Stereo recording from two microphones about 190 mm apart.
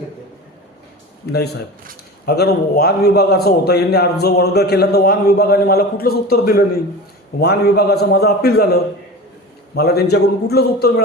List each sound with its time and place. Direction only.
1.3 s a man's voice: 60° left (ahead or behind)